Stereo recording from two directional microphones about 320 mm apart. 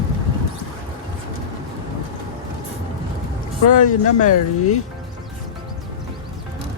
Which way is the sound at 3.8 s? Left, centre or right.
Left.